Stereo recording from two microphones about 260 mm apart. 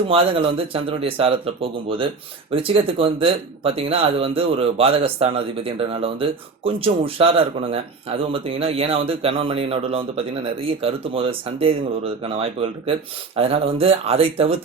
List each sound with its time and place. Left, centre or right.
0.1 s speech: right